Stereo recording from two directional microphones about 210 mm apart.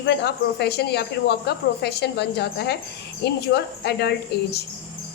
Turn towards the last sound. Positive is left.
turn(degrees=50)  # may be behind; listen again after turning